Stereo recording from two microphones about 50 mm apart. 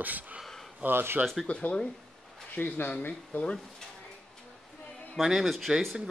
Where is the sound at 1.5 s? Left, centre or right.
Left.